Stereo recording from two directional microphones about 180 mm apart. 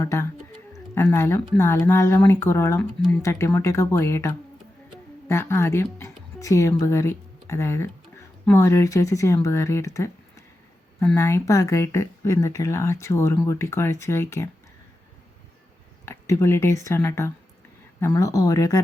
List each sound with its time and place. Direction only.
0.0 s speech: 15° left (ahead or behind)
16.0 s speech: 15° left (ahead or behind)